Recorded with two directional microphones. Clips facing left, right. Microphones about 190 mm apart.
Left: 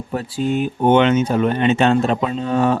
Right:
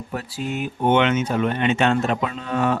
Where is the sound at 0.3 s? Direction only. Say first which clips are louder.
Left 8 dB; 30° left (ahead or behind).